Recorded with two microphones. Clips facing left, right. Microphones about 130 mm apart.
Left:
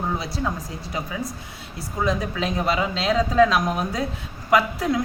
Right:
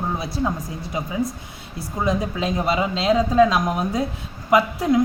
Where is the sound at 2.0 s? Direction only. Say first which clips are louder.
Right 1 dB; 20° right (ahead or behind).